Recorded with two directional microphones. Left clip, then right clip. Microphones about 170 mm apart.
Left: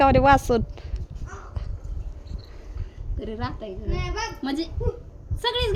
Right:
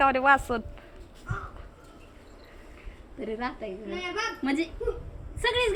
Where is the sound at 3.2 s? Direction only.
25° left (ahead or behind).